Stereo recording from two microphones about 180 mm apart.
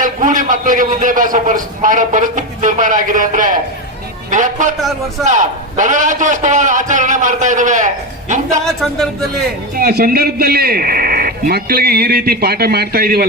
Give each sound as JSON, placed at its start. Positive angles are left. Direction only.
{"t": 0.0, "sound": "a man's voice", "side_deg": -45}
{"t": 8.6, "sound": "a woman's voice", "side_deg": 0}
{"t": 9.7, "sound": "a man's voice", "side_deg": -60}